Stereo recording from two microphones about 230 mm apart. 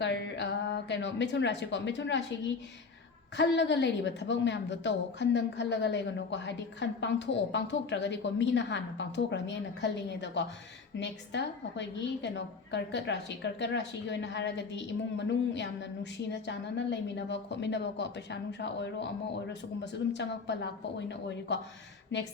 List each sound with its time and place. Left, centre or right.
0.0 s a woman's voice: left
3.3 s a woman's voice: left